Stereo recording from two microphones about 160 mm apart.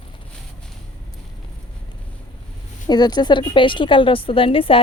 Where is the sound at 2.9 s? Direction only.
25° left (ahead or behind).